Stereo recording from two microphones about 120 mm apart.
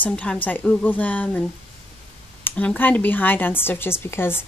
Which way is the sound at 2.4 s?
10° left (ahead or behind).